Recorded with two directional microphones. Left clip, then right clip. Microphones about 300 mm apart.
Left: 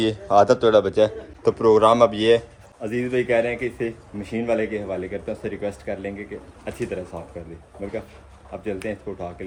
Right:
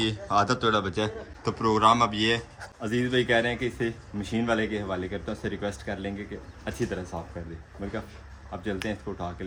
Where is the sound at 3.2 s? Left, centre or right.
Right.